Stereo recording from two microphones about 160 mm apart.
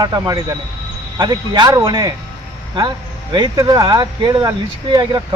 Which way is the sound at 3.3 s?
25° right (ahead or behind).